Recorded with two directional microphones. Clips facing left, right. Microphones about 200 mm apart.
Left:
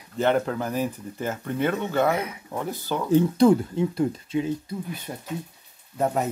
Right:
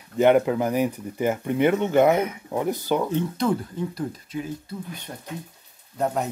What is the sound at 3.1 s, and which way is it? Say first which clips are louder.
Speech: left 6 dB; 30° left (ahead or behind).